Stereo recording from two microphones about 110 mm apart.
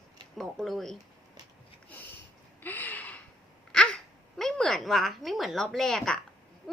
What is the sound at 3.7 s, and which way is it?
A woman's voice, 5° left (ahead or behind).